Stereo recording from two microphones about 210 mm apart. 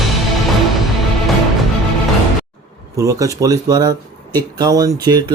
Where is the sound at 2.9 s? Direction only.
15° right (ahead or behind).